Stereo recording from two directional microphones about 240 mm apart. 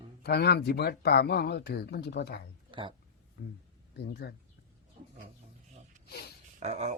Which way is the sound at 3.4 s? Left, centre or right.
Left.